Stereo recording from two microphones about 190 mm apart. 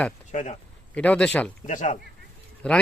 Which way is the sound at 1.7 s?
40° left (ahead or behind).